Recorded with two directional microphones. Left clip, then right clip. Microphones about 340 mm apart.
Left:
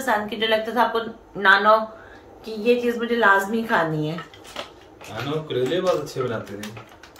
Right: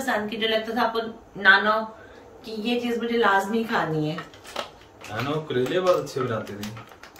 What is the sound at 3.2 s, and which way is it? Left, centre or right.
Speech, centre.